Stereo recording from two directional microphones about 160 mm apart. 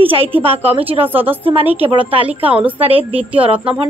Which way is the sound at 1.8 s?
35° right (ahead or behind).